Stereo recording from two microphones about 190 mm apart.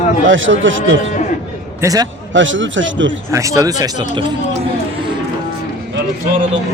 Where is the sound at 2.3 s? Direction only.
80° right.